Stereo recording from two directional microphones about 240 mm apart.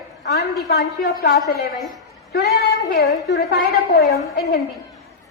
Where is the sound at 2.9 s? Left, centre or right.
Left.